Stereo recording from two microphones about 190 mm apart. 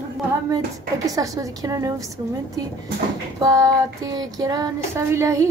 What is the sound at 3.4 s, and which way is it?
Child singing, 20° right (ahead or behind).